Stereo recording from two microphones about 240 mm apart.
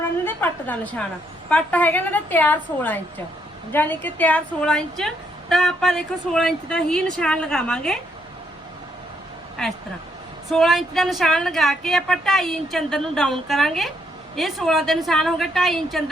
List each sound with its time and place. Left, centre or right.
0.0 s a sound: centre
1.5 s a woman's voice: centre
9.6 s a woman's voice: centre